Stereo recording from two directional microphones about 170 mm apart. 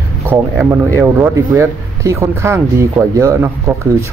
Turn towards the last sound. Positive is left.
turn(degrees=-15)  # may be behind; listen again after turning